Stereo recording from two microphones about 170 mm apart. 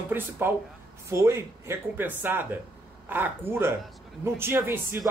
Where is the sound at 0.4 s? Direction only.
15° right (ahead or behind).